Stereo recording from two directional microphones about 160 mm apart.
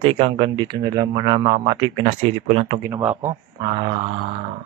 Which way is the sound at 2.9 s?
10° right (ahead or behind).